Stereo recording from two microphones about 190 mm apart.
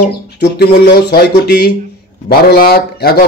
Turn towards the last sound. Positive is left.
turn(degrees=55)  # may be behind; listen again after turning